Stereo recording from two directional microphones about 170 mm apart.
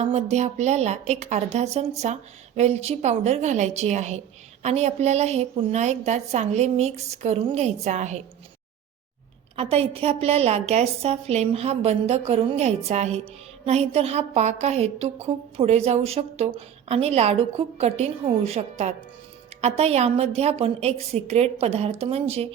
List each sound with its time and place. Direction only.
0.0 s a woman's voice: 40° right (ahead or behind)
9.6 s a woman's voice: 35° right (ahead or behind)